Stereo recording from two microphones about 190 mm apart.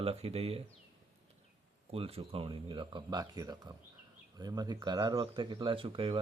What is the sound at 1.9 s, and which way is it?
Speech, 30° right (ahead or behind).